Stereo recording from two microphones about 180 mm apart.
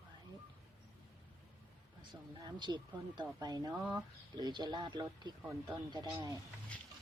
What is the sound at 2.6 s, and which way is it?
Speech, 25° right (ahead or behind).